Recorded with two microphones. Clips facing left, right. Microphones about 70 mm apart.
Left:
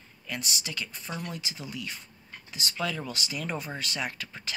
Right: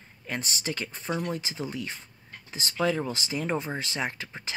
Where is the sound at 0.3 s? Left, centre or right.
Right.